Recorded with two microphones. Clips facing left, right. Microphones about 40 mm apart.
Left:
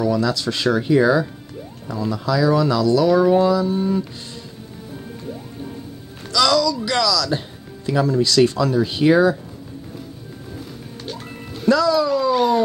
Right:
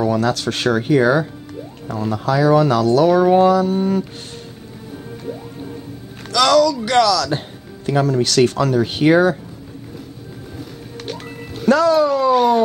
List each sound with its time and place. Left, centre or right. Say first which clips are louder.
0.0 s speech: right 2 dB; right
6.3 s speech: right 4 dB; right
11.7 s speech: right 3 dB; right
12.3 s a sound: right 3 dB; centre